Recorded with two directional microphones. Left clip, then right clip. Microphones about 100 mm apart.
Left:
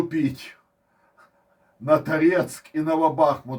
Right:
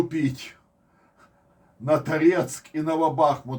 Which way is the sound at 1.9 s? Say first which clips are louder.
Left 1 dB; 5° right (ahead or behind).